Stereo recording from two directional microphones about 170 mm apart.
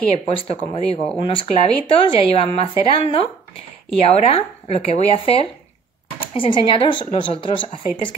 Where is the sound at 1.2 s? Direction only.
30° left (ahead or behind).